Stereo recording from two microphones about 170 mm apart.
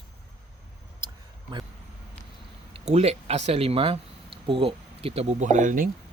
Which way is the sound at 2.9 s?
40° right (ahead or behind).